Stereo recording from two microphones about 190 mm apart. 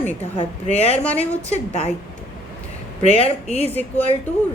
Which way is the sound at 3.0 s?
30° left (ahead or behind).